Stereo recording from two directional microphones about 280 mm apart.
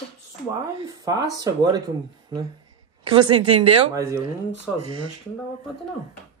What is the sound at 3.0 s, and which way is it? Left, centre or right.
A woman's voice, centre.